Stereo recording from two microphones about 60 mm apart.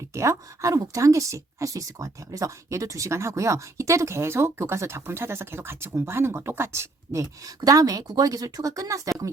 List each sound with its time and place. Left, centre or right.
0.1 s speech: right
7.1 s speech: right